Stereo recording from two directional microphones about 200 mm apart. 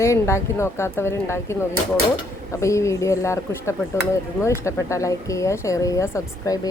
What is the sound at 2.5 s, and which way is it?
Speech, 15° left (ahead or behind).